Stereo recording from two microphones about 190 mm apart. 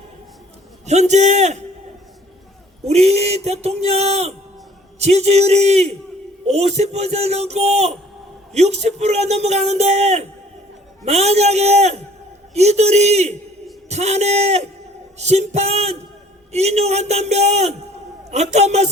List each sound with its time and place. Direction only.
0.9 s speech: 35° right (ahead or behind)
2.8 s speech: 35° right (ahead or behind)